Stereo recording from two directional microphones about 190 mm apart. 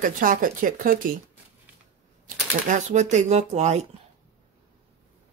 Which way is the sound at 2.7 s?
40° right (ahead or behind).